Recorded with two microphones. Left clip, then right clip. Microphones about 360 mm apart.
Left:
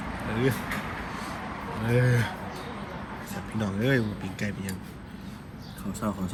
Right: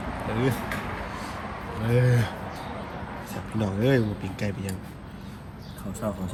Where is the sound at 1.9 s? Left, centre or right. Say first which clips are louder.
Right 1 dB; centre.